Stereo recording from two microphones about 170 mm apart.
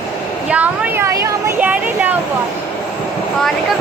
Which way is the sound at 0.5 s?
10° right (ahead or behind).